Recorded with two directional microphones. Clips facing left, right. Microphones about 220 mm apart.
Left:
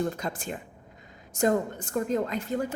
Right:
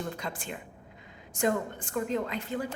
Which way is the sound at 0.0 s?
45° left (ahead or behind).